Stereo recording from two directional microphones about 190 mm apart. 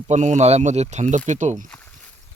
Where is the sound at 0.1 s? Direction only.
40° right (ahead or behind).